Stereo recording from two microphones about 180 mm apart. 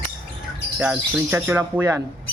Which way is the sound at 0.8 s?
10° right (ahead or behind).